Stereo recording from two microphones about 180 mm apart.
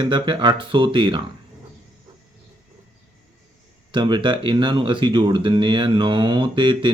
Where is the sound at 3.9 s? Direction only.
25° right (ahead or behind).